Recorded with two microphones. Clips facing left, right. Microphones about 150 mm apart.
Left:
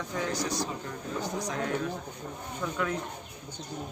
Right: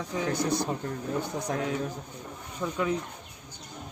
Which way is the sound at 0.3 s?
55° right (ahead or behind).